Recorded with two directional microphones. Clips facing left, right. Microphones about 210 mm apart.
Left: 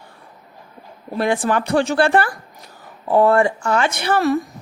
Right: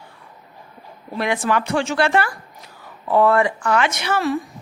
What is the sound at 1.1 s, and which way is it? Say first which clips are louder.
Speech: left 2 dB; 35° left (ahead or behind).